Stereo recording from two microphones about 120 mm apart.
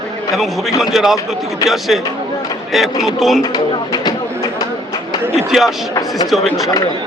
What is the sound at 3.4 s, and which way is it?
Speech, 35° left (ahead or behind).